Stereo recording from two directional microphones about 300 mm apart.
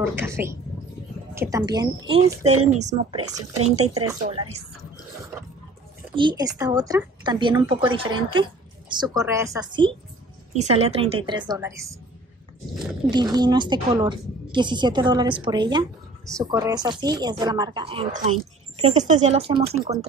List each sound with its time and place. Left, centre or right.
0.0 s a woman's voice: centre
6.1 s a woman's voice: centre
13.1 s a woman's voice: centre